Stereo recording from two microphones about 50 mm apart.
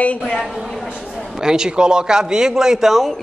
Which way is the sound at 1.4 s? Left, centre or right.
Centre.